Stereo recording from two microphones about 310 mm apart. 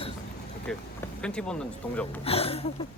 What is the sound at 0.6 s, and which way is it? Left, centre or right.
Speech, centre.